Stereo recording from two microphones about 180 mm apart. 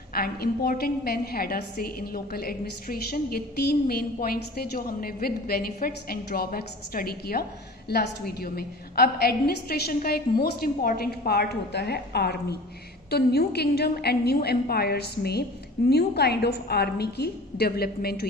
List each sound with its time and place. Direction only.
0.1 s a woman's voice: 55° left (ahead or behind)